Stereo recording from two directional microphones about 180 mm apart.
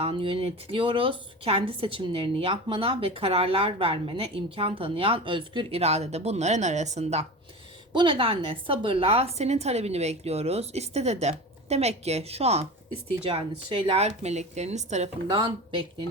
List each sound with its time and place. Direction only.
0.0 s a woman's voice: 30° right (ahead or behind)